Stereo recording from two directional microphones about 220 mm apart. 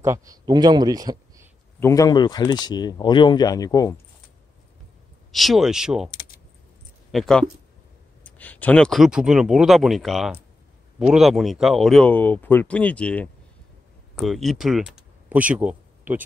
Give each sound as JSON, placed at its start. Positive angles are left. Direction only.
{"t": 0.3, "sound": "speech", "side_deg": -20}
{"t": 1.8, "sound": "speech", "side_deg": 15}
{"t": 5.3, "sound": "speech", "side_deg": 0}
{"t": 7.1, "sound": "speech", "side_deg": 0}